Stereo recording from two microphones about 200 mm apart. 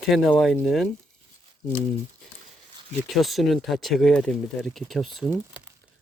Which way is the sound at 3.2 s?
Centre (ahead or behind).